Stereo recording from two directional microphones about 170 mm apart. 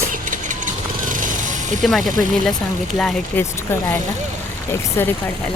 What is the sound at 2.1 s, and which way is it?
Speech, 50° right (ahead or behind).